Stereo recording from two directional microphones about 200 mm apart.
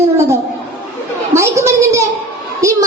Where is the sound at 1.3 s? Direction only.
15° right (ahead or behind).